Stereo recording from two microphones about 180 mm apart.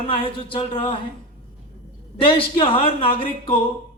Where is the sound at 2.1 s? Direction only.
30° left (ahead or behind).